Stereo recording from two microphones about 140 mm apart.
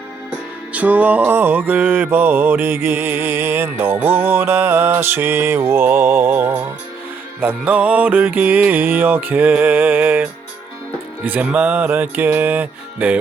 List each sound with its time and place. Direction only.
0.7 s mantra: 10° right (ahead or behind)